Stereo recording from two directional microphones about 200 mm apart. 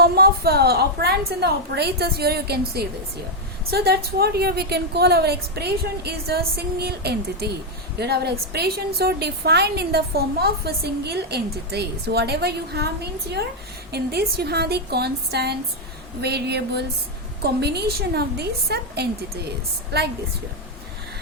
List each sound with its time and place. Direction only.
0.0 s a woman's voice: 50° right (ahead or behind)